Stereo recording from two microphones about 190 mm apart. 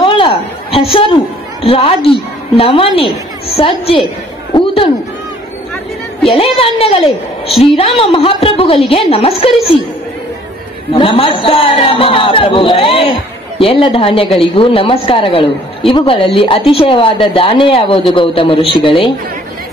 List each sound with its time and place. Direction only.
0.0 s a sound: 30° left (ahead or behind)
1.6 s a woman's voice: 30° left (ahead or behind)
6.2 s a woman's voice: 30° left (ahead or behind)
10.9 s a woman's voice: 30° left (ahead or behind)